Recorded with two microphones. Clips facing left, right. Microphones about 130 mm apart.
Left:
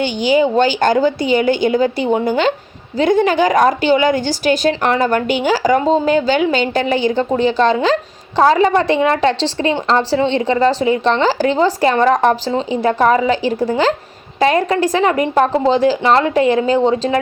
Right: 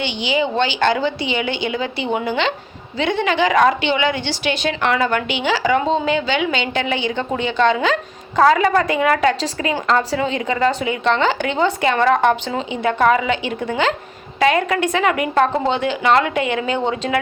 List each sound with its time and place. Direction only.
0.0 s a woman's voice: 45° left (ahead or behind)